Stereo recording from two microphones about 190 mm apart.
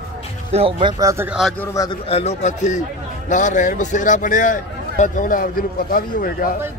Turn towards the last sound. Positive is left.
turn(degrees=50)  # may be behind; listen again after turning